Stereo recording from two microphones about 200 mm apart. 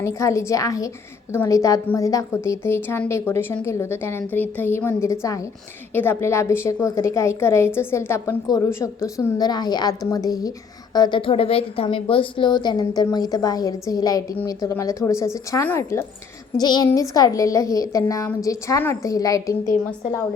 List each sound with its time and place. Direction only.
0.0 s a woman's voice: 15° left (ahead or behind)